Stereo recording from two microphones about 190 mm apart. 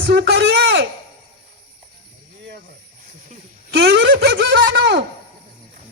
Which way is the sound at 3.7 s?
65° right (ahead or behind).